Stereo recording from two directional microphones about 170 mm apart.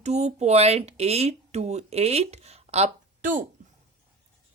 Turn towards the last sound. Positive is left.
turn(degrees=-50)  # may be behind; listen again after turning